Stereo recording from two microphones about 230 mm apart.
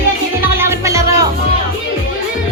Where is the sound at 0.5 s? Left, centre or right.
Centre.